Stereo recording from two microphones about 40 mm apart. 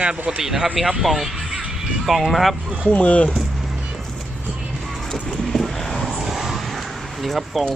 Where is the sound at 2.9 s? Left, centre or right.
Left.